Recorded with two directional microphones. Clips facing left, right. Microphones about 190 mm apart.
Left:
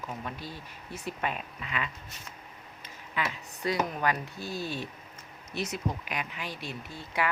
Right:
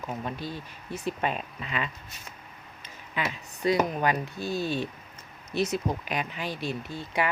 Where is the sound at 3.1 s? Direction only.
20° right (ahead or behind).